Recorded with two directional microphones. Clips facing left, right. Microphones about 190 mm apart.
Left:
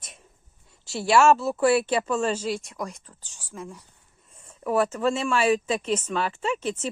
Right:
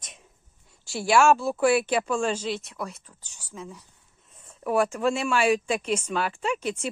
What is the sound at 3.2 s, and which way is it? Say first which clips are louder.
Speech: left 2 dB; 10° left (ahead or behind).